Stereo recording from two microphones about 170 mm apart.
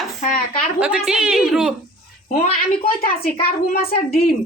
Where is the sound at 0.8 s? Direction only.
5° right (ahead or behind).